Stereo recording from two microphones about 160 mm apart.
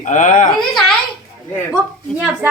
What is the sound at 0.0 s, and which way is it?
Speech, 50° left (ahead or behind).